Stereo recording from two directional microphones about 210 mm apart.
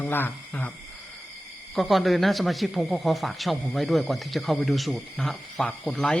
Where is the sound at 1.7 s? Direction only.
Centre (ahead or behind).